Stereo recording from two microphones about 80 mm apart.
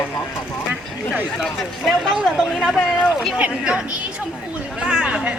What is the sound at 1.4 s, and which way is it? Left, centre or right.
Speech, centre.